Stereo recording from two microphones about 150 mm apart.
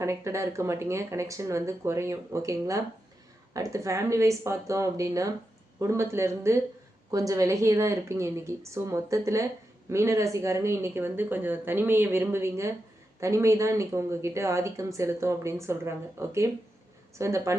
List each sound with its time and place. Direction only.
0.0 s speech: 20° right (ahead or behind)